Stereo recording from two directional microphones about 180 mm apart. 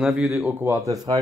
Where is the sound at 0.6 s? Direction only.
15° right (ahead or behind).